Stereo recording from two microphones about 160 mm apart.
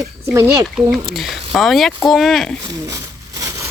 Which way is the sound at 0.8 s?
Centre (ahead or behind).